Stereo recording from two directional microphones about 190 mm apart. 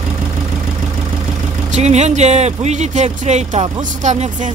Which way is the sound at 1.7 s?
35° right (ahead or behind).